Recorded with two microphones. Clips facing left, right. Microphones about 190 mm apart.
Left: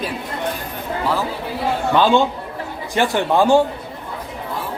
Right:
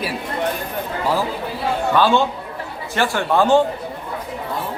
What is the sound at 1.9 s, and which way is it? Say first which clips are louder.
Speech: left 2 dB; 15° left (ahead or behind).